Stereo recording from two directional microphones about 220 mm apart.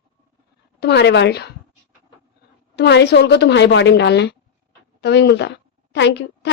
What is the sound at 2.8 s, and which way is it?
A woman's voice, 50° left (ahead or behind).